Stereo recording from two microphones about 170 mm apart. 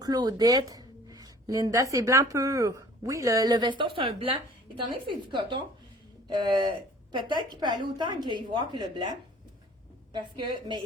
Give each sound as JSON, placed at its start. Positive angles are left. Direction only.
{"t": 0.0, "sound": "a woman's voice", "side_deg": -25}